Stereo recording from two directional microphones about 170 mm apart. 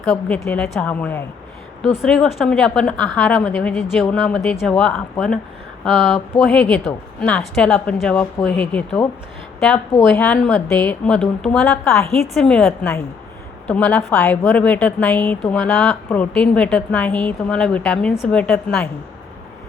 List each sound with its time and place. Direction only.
0.0 s a woman's voice: 5° left (ahead or behind)